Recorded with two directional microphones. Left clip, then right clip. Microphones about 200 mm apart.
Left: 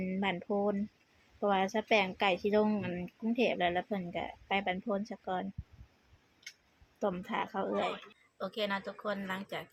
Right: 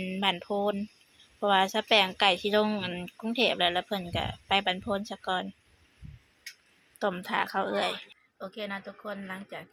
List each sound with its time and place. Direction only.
0.0 s speech: centre (ahead or behind)
7.0 s speech: centre (ahead or behind)
8.4 s a woman's voice: 15° left (ahead or behind)